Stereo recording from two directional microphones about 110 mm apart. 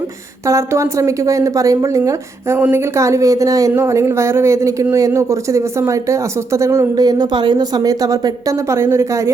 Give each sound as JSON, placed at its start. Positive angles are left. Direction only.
{"t": 0.4, "sound": "speech", "side_deg": -25}